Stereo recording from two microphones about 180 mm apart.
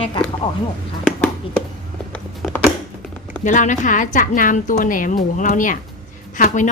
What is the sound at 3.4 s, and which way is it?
A woman's voice, 45° left (ahead or behind).